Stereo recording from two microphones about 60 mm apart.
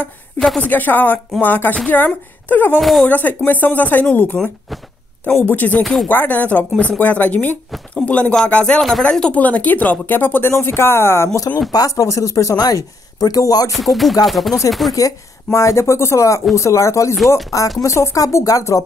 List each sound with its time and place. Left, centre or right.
0.6 s a woman's voice: left
2.8 s music: centre
3.1 s speech: left
11.7 s speech: left
13.7 s music: centre
14.9 s speech: left
17.8 s speech: left
18.2 s speech: left
18.6 s speech: left